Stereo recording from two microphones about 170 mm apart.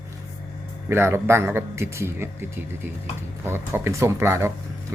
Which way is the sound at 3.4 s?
15° right (ahead or behind).